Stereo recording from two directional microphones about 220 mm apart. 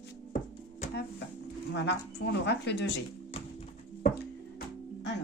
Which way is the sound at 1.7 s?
50° left (ahead or behind).